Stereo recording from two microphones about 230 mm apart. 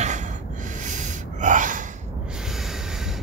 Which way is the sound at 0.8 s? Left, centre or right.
Right.